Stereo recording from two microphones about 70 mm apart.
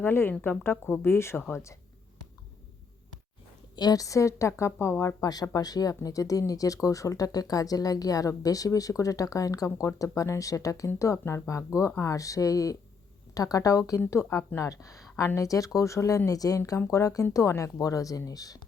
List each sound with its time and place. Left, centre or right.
0.0 s speech: left
3.8 s speech: left
5.2 s speech: left